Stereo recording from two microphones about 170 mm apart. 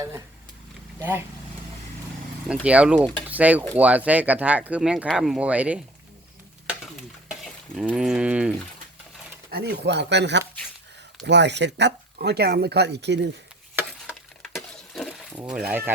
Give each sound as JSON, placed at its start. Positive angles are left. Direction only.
{"t": 0.9, "sound": "speech", "side_deg": -10}
{"t": 2.5, "sound": "speech", "side_deg": -5}
{"t": 3.2, "sound": "stir", "side_deg": -10}
{"t": 3.8, "sound": "speech", "side_deg": -10}
{"t": 7.4, "sound": "speech", "side_deg": -5}
{"t": 9.5, "sound": "speech", "side_deg": -80}
{"t": 14.4, "sound": "breaking", "side_deg": 0}
{"t": 15.4, "sound": "speech", "side_deg": -5}